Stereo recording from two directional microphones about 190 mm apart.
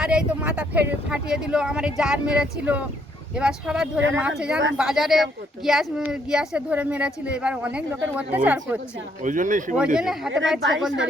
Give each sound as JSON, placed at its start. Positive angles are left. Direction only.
{"t": 0.0, "sound": "speech", "side_deg": -5}
{"t": 9.2, "sound": "speech", "side_deg": -45}
{"t": 9.7, "sound": "speech", "side_deg": -5}